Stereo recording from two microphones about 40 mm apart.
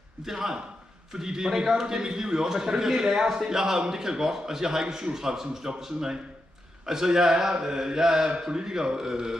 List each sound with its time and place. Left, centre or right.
0.2 s a man's voice: centre